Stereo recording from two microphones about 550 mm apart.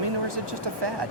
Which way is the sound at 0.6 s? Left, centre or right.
Right.